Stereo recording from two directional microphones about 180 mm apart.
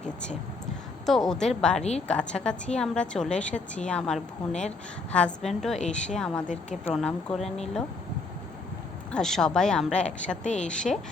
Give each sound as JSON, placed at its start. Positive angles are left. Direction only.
{"t": 1.0, "sound": "a woman's voice", "side_deg": 0}
{"t": 6.5, "sound": "speech", "side_deg": 40}
{"t": 6.9, "sound": "a woman's voice", "side_deg": 0}
{"t": 9.1, "sound": "a woman's voice", "side_deg": 0}